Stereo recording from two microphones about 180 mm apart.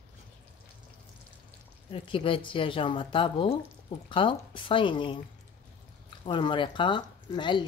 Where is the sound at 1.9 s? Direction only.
30° left (ahead or behind).